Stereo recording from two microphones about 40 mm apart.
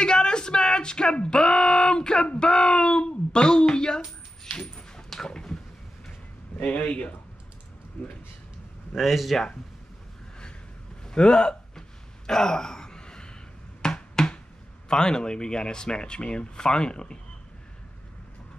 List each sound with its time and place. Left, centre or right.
0.0 s music: left
4.6 s dog: centre
6.6 s speech: left
8.9 s speech: centre
11.1 s a sound: left
14.9 s speech: centre